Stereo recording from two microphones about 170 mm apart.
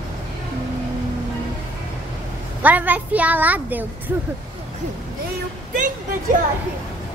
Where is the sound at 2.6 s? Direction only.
10° right (ahead or behind).